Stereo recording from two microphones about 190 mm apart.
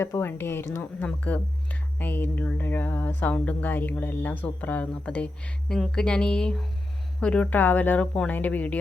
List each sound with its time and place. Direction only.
0.0 s speech: 15° left (ahead or behind)